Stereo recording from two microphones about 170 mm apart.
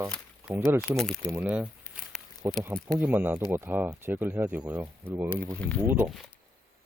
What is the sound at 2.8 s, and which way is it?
Speech, 10° right (ahead or behind).